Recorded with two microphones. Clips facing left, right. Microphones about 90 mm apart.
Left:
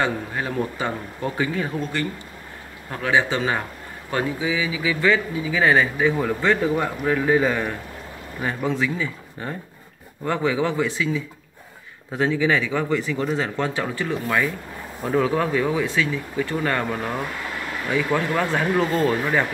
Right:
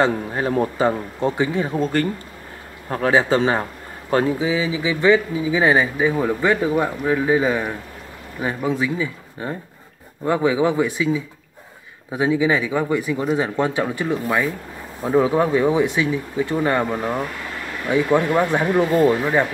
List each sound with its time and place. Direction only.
0.0 s speech: 30° right (ahead or behind)
2.9 s speech: 35° right (ahead or behind); by 19.1 s 20° right (ahead or behind)